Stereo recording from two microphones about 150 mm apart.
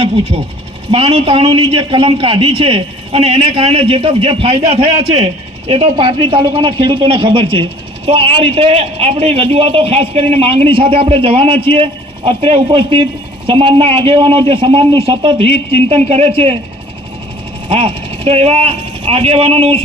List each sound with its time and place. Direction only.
0.0 s a man's voice: 40° right (ahead or behind)
17.7 s speech: 40° right (ahead or behind)